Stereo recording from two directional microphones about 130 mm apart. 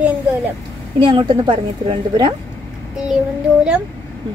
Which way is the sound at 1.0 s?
40° right (ahead or behind).